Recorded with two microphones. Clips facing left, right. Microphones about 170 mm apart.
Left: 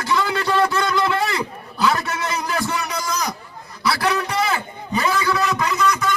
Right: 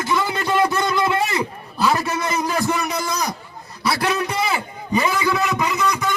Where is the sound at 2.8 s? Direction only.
25° right (ahead or behind).